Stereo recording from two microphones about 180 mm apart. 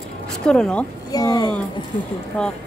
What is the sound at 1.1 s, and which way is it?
Speech, 20° left (ahead or behind).